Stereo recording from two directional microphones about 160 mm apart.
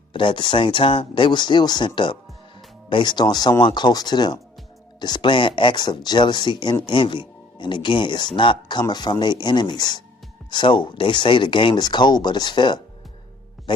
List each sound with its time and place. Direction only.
0.1 s speech: 30° left (ahead or behind)
13.7 s music: 30° left (ahead or behind)